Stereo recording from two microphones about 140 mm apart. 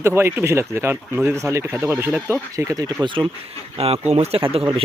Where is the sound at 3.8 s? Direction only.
45° right (ahead or behind).